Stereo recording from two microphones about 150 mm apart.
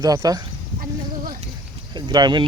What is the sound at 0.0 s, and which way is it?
Speech, 25° right (ahead or behind).